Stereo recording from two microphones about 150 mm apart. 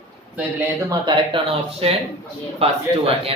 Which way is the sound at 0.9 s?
30° right (ahead or behind).